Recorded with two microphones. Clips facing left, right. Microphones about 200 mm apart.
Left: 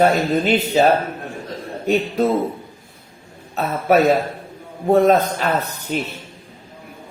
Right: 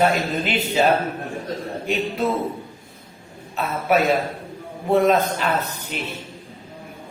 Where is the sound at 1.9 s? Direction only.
40° left (ahead or behind).